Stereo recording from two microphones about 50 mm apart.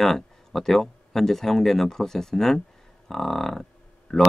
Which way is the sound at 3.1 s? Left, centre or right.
Centre.